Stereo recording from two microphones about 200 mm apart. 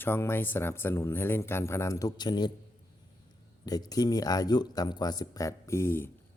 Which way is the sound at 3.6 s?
20° left (ahead or behind).